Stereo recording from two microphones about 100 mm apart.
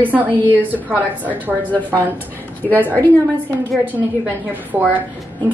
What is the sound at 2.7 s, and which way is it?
Speech, 15° left (ahead or behind).